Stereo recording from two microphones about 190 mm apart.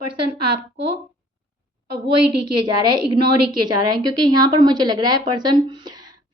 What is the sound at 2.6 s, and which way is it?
Speech, 25° right (ahead or behind).